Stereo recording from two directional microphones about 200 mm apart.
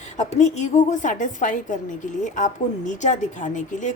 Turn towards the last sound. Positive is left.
turn(degrees=40)  # may be behind; listen again after turning